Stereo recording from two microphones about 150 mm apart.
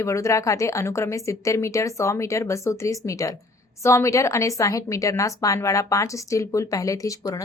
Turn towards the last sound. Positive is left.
turn(degrees=20)  # may be behind; listen again after turning